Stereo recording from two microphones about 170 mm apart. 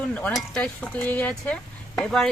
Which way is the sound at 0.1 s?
5° left (ahead or behind).